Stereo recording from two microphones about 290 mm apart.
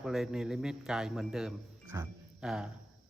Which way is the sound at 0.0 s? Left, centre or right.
Centre.